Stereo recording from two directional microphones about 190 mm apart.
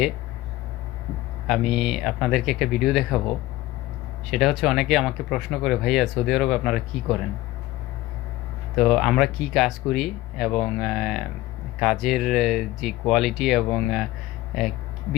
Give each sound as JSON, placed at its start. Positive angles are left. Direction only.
{"t": 1.5, "sound": "speech", "side_deg": 0}
{"t": 4.3, "sound": "speech", "side_deg": 0}
{"t": 8.8, "sound": "speech", "side_deg": 0}